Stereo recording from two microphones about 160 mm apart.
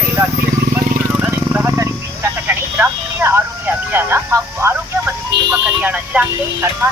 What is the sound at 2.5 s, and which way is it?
Telephone, 10° right (ahead or behind).